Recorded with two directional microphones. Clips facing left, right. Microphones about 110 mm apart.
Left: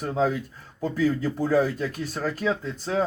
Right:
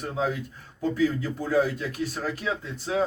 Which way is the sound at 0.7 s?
45° left (ahead or behind).